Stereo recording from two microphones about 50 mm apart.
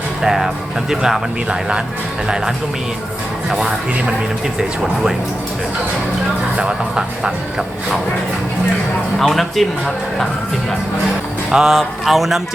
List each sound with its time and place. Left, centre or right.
0.2 s speech: centre
3.5 s speech: centre
6.6 s speech: right
9.1 s speech: centre
11.5 s speech: centre